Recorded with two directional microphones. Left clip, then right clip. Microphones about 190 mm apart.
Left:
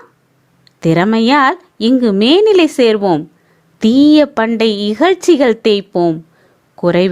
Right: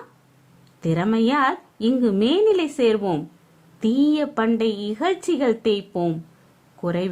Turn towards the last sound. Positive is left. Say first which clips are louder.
# left 13 dB
turn(degrees=40)  # may be behind; listen again after turning